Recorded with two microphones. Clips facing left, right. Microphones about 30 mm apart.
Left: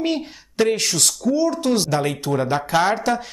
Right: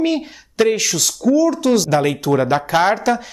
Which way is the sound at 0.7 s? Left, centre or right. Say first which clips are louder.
Right 2 dB; right.